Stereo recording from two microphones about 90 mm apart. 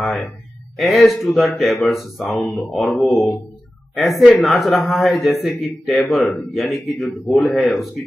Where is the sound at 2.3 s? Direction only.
25° left (ahead or behind).